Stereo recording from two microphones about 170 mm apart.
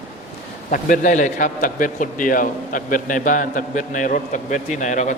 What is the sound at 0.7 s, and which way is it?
A man's voice, 50° left (ahead or behind).